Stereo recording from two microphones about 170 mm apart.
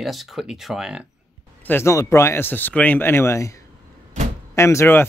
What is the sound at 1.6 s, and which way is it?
Speech, 15° left (ahead or behind).